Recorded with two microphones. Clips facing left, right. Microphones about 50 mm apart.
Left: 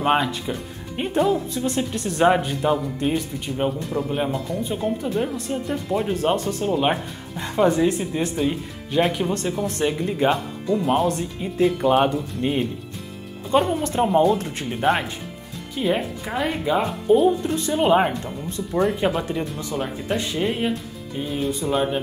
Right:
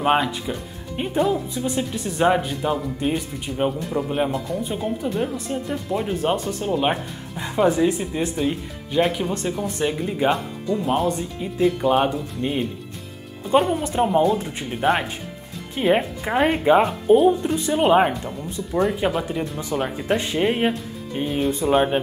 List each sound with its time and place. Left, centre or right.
0.0 s speech: centre
15.7 s speech: right
17.2 s speech: centre
19.5 s speech: right